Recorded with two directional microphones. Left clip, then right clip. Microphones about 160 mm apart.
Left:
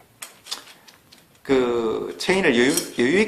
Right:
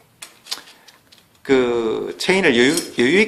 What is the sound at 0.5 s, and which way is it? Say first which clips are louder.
Tick-tock: right 4 dB; 30° right (ahead or behind).